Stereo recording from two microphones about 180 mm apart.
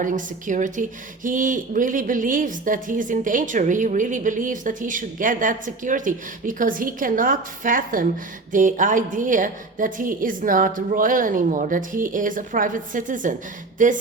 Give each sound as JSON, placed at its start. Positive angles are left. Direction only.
{"t": 0.0, "sound": "speech", "side_deg": -45}